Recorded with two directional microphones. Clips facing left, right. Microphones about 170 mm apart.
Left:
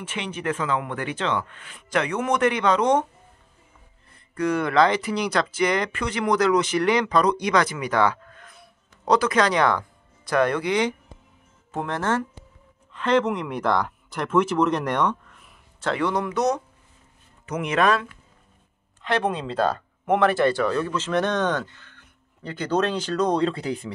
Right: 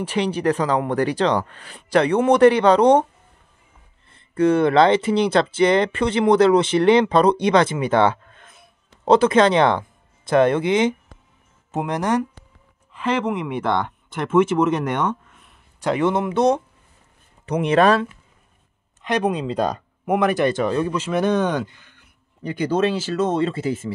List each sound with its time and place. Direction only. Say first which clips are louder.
0.0 s speech: right 9 dB; 35° right (ahead or behind)
4.1 s speech: right 7 dB; 25° right (ahead or behind); by 15.5 s centre (ahead or behind)
15.8 s speech: right 4 dB; 20° right (ahead or behind)
19.0 s speech: right 3 dB; 15° right (ahead or behind)